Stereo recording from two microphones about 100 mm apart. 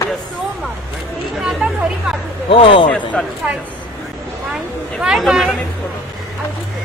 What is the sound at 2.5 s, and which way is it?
Speech, 65° left (ahead or behind).